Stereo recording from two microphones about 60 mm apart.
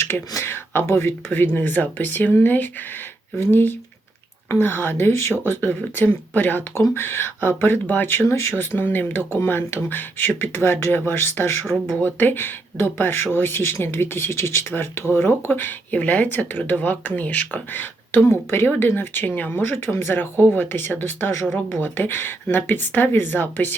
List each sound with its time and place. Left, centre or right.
0.4 s speech: left